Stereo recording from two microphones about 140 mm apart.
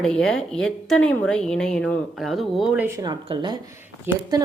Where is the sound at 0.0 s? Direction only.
5° left (ahead or behind).